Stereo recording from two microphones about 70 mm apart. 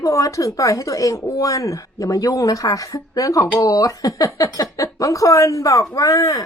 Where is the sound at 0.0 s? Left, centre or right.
Left.